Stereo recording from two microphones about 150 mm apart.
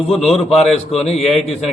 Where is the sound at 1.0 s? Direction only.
45° left (ahead or behind).